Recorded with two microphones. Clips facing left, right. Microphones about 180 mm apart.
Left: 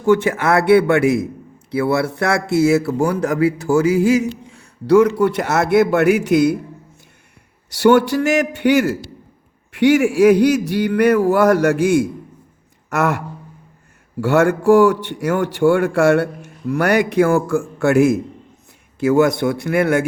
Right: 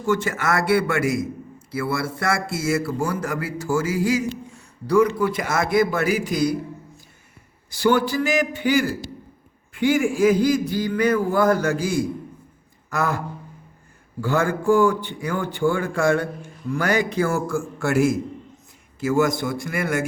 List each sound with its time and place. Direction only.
0.0 s a man's voice: 60° left (ahead or behind)
7.7 s a man's voice: 70° left (ahead or behind)